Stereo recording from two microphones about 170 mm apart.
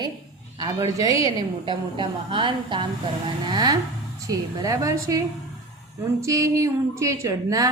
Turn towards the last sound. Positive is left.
turn(degrees=-20)  # may be behind; listen again after turning